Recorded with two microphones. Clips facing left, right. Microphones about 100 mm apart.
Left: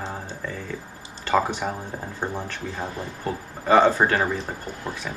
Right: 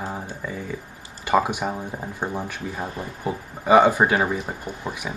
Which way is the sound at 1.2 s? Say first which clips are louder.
Right 2 dB; 10° right (ahead or behind).